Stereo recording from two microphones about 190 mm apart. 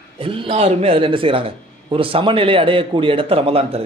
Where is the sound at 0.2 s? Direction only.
30° right (ahead or behind).